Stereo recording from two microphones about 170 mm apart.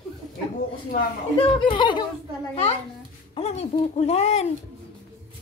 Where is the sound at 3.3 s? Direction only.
35° left (ahead or behind).